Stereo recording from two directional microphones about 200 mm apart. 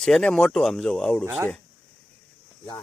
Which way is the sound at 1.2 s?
15° right (ahead or behind).